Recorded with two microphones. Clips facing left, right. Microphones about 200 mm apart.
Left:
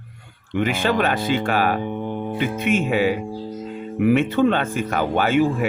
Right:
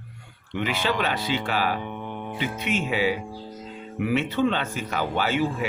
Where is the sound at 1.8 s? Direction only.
35° left (ahead or behind).